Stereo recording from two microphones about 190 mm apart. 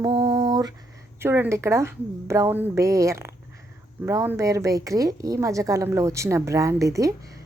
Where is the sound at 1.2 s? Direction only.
10° right (ahead or behind).